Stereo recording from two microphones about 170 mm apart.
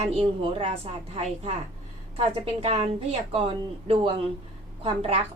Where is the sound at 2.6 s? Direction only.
40° right (ahead or behind).